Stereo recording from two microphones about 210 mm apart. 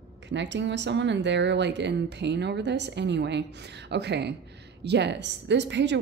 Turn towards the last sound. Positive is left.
turn(degrees=-55)  # may be behind; listen again after turning